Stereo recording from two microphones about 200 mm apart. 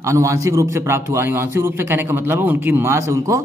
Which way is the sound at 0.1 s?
15° right (ahead or behind).